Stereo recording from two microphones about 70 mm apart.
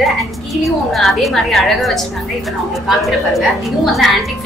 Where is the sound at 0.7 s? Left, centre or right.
Centre.